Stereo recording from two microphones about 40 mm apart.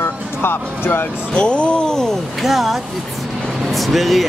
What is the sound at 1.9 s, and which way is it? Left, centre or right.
Speech, centre.